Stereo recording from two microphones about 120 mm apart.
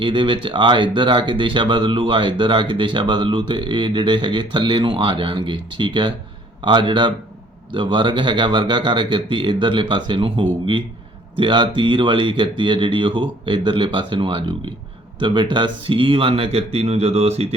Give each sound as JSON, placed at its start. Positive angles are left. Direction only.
{"t": 0.0, "sound": "speech", "side_deg": -45}